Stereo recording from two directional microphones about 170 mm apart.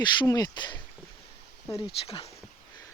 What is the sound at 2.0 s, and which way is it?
Speech, 35° left (ahead or behind).